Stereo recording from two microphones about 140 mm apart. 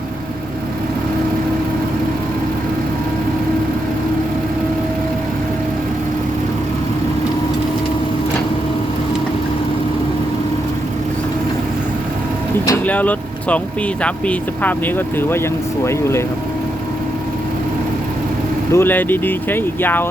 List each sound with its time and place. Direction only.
12.8 s speech: 10° left (ahead or behind)
18.7 s speech: 15° left (ahead or behind)